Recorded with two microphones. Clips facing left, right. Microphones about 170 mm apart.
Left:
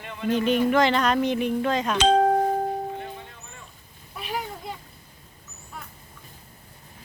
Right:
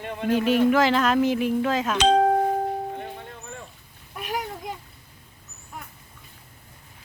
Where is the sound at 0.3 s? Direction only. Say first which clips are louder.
Right 2 dB; 5° right (ahead or behind).